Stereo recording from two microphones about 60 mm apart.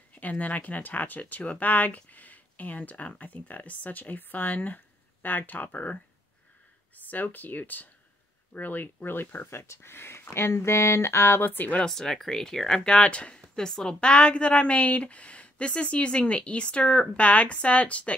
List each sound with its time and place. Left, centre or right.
0.1 s speech: left
7.1 s speech: left
9.5 s speech: left
11.8 s speech: centre